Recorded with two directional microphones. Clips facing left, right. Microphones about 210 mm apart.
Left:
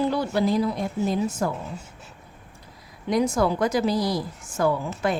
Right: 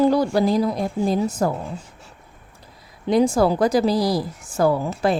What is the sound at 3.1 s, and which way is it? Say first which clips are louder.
A woman's voice: right 5 dB; 30° right (ahead or behind).